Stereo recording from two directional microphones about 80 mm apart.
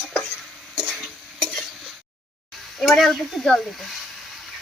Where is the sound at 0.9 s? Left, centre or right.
Centre.